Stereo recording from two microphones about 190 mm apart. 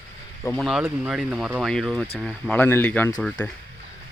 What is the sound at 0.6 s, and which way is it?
Speech, 5° right (ahead or behind).